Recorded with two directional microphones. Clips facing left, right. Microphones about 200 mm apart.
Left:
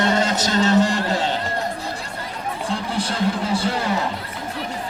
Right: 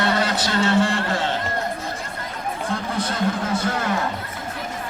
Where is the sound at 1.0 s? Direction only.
15° left (ahead or behind).